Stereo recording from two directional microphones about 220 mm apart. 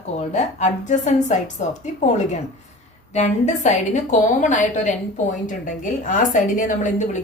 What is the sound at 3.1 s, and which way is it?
A woman's voice, 30° left (ahead or behind).